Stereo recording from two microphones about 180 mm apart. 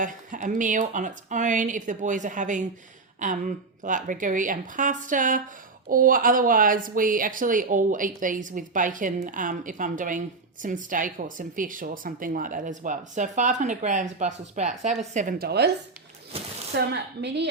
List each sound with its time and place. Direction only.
0.0 s speech: 45° right (ahead or behind); by 15.7 s 65° right (ahead or behind)
16.3 s speech: 30° right (ahead or behind)
16.7 s speech: 70° right (ahead or behind)